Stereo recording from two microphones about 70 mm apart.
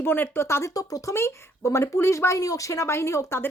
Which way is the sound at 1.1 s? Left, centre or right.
Left.